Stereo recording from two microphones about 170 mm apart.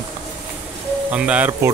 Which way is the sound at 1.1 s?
5° right (ahead or behind).